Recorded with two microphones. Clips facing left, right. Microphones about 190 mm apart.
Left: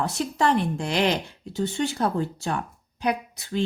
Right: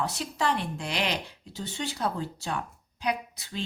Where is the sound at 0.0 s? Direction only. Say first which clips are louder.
Left 5 dB; 50° left (ahead or behind).